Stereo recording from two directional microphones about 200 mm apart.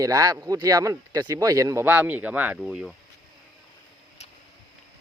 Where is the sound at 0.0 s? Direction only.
15° right (ahead or behind).